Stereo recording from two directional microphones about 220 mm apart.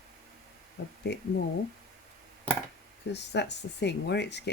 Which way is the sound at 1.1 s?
50° left (ahead or behind).